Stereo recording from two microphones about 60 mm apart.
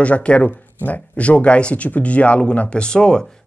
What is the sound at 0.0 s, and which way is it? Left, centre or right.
Speech, left.